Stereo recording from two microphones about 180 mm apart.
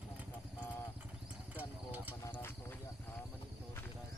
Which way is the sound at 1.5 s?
10° right (ahead or behind).